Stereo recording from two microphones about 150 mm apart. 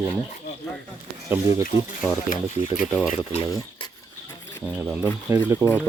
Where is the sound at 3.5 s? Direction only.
25° left (ahead or behind).